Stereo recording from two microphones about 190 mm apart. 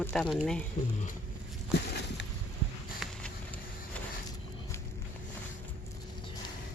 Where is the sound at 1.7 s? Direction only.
60° left (ahead or behind).